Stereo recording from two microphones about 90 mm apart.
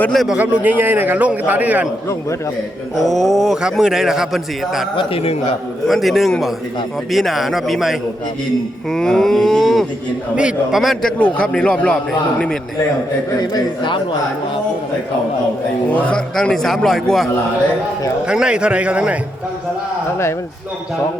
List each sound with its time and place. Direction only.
0.1 s a man's voice: centre (ahead or behind)
0.3 s a man's voice: 15° right (ahead or behind)
3.0 s a man's voice: centre (ahead or behind)
4.9 s a man's voice: 90° left
5.9 s a man's voice: centre (ahead or behind)
10.3 s a man's voice: 10° right (ahead or behind)
10.8 s a man's voice: centre (ahead or behind)
11.2 s speech: 10° left (ahead or behind)
13.4 s a man's voice: 55° left (ahead or behind)
15.9 s a man's voice: 15° left (ahead or behind)
18.3 s a man's voice: 10° right (ahead or behind)